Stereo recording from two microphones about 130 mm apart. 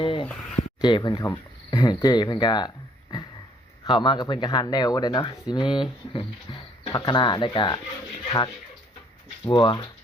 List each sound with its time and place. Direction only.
0.0 s a sound: 40° left (ahead or behind)
0.3 s speech: centre (ahead or behind)
0.8 s speech: 35° left (ahead or behind)
9.5 s speech: 35° left (ahead or behind)